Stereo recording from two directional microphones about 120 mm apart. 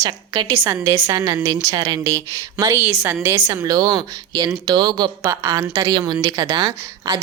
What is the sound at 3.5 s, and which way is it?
A woman's voice, 30° right (ahead or behind).